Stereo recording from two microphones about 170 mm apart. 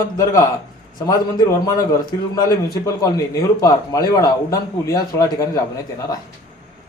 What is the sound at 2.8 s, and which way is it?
A man's voice, 20° left (ahead or behind).